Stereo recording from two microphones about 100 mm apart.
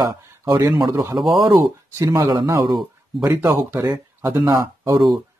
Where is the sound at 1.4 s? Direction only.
40° right (ahead or behind).